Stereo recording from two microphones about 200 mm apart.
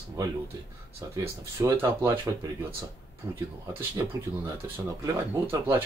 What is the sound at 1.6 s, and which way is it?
Speech, 15° right (ahead or behind).